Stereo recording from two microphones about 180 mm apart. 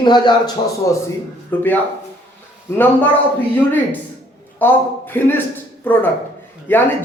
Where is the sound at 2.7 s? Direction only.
10° left (ahead or behind).